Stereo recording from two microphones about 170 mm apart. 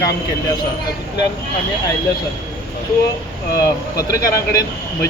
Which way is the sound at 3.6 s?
20° left (ahead or behind).